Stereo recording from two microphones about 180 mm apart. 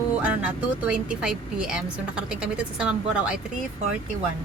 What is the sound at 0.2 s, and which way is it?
A woman's voice, 5° right (ahead or behind).